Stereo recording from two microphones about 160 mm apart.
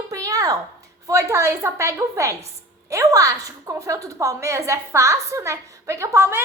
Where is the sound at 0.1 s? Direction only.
20° right (ahead or behind).